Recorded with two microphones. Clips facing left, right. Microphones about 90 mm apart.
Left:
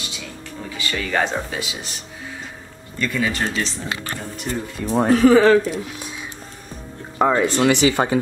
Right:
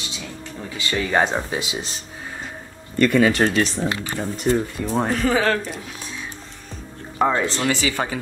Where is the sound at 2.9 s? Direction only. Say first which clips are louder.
Right 7 dB; 55° right (ahead or behind).